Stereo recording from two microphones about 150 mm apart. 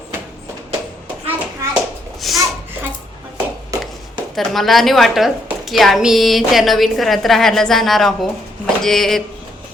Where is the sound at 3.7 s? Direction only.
20° right (ahead or behind).